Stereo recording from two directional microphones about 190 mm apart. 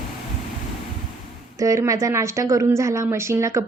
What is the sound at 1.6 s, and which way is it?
Speech, 15° right (ahead or behind).